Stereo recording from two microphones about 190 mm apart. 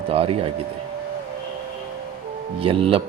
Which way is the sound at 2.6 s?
30° right (ahead or behind).